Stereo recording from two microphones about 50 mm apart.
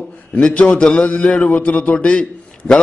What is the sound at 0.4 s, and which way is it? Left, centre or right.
A man's voice, left.